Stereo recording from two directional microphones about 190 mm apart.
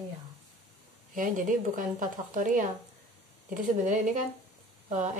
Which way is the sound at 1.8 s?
45° right (ahead or behind).